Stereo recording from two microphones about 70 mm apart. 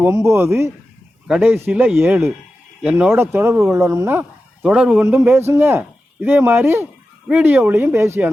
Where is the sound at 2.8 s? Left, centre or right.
Centre.